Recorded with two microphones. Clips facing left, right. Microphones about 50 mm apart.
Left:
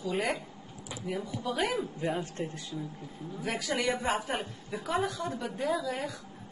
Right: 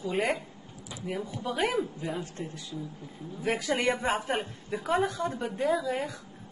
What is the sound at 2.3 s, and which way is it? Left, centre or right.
Speech, left.